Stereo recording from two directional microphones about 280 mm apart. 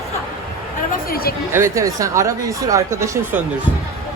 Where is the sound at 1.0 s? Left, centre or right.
Left.